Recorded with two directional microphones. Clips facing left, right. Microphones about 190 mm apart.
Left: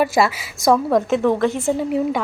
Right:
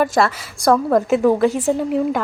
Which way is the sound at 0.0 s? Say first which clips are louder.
Even; 5° left (ahead or behind).